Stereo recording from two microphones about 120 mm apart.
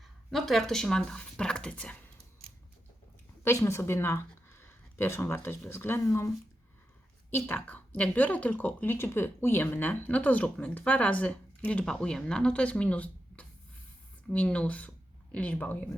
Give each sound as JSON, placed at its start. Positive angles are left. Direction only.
{"t": 0.0, "sound": "speech", "side_deg": 0}
{"t": 3.4, "sound": "a woman's voice", "side_deg": 20}